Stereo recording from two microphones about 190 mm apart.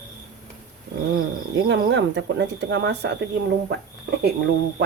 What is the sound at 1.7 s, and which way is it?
Speech, 65° right (ahead or behind).